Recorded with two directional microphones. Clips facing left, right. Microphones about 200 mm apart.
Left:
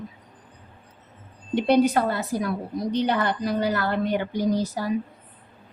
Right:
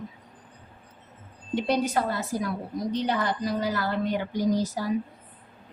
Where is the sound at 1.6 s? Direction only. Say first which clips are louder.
Left 6 dB; 65° left (ahead or behind).